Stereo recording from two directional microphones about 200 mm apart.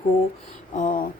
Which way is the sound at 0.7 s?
40° left (ahead or behind).